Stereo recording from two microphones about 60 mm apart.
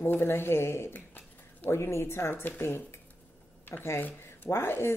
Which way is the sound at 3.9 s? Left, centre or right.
Left.